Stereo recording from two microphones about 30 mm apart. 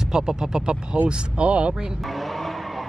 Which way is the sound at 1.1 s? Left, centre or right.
Right.